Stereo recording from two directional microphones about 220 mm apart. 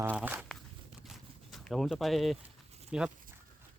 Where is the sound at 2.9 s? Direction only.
5° right (ahead or behind).